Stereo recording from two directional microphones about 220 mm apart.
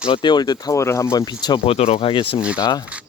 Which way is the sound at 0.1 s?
20° left (ahead or behind).